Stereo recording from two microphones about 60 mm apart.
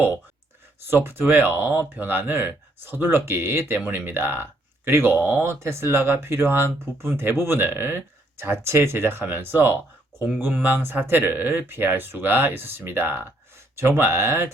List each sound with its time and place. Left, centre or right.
0.9 s speech: right
3.8 s speech: right